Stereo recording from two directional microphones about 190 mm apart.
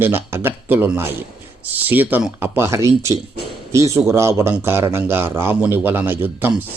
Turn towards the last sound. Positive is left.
turn(degrees=-10)  # may be behind; listen again after turning